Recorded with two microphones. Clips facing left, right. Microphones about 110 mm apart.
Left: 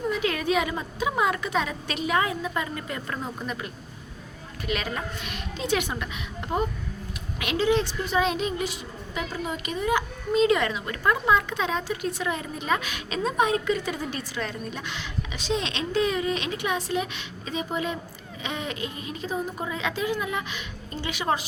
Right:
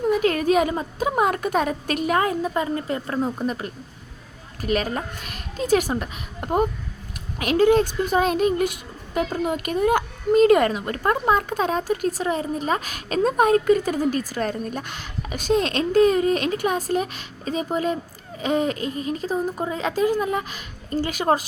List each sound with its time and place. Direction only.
0.1 s a child's voice: 45° right (ahead or behind)
2.5 s a child's voice: 35° right (ahead or behind)